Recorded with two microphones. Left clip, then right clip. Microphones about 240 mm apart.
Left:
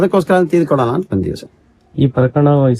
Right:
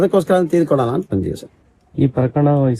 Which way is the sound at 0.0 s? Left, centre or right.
Centre.